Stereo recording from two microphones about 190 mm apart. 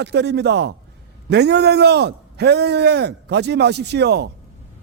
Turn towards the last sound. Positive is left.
turn(degrees=-60)  # may be behind; listen again after turning